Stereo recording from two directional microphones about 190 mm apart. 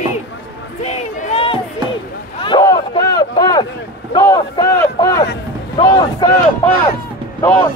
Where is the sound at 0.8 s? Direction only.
35° left (ahead or behind).